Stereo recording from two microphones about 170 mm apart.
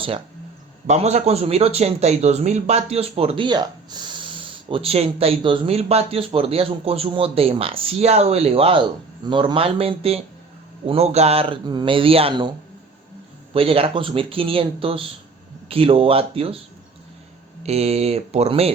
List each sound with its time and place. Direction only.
0.9 s speech: 40° right (ahead or behind)
13.5 s speech: 35° right (ahead or behind)
17.6 s speech: 40° right (ahead or behind)